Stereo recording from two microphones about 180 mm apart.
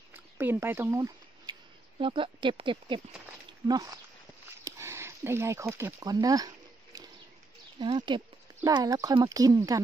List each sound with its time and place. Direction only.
0.1 s a sound: 10° right (ahead or behind); by 3.0 s 30° right (ahead or behind)
3.6 s speech: 20° right (ahead or behind)
7.8 s speech: 25° right (ahead or behind)